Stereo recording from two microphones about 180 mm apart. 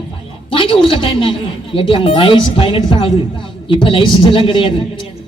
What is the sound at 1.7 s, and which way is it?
A woman's voice, 30° left (ahead or behind).